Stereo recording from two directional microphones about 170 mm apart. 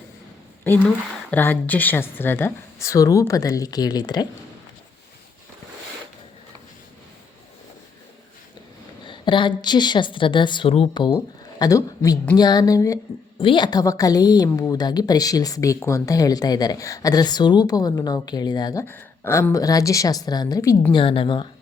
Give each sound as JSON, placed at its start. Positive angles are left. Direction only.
{"t": 0.6, "sound": "a woman's voice", "side_deg": 10}
{"t": 9.0, "sound": "a woman's voice", "side_deg": 30}
{"t": 20.9, "sound": "a woman's voice", "side_deg": 30}